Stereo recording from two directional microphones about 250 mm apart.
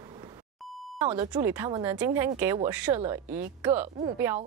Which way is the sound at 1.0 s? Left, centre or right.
Centre.